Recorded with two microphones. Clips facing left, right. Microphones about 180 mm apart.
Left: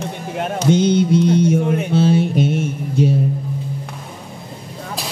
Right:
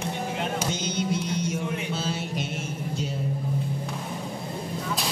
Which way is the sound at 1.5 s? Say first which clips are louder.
Left 12 dB; 55° left (ahead or behind).